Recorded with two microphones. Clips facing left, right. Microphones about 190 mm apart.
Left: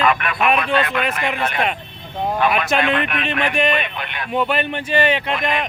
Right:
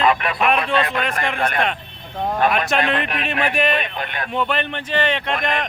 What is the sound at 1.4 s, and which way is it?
Speech, 50° right (ahead or behind).